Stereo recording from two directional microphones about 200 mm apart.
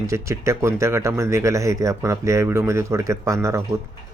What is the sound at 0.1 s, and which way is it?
Speech, 15° right (ahead or behind).